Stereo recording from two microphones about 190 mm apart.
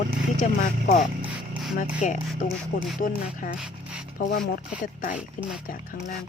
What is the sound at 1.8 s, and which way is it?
Speech, 45° left (ahead or behind).